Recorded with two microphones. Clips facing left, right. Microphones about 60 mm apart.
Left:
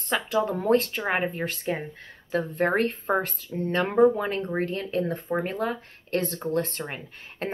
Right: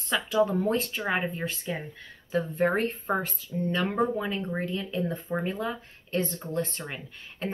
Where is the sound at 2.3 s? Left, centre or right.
Left.